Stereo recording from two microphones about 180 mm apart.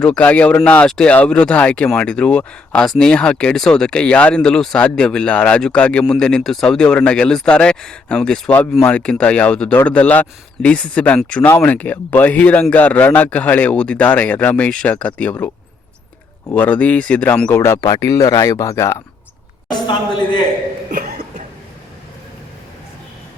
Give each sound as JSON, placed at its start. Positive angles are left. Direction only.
{"t": 0.0, "sound": "a man's voice", "side_deg": 5}